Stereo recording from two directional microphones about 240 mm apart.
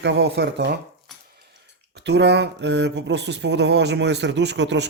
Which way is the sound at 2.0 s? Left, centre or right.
Right.